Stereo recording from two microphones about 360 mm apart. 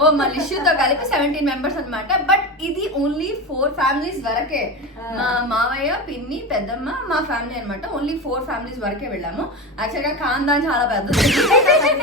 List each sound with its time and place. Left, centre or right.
0.0 s a woman's voice: centre
5.1 s a sound: left
5.5 s a woman's voice: centre